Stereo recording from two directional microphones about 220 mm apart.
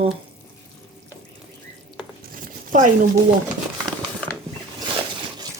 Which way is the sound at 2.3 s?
35° right (ahead or behind).